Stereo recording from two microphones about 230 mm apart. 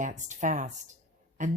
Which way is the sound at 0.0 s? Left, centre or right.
Right.